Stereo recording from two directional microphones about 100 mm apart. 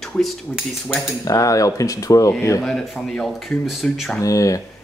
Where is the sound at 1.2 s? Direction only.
35° left (ahead or behind).